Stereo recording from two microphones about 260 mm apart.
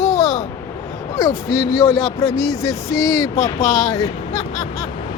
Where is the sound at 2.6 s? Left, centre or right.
Centre.